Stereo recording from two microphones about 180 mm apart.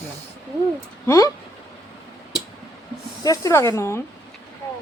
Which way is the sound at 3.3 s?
15° left (ahead or behind).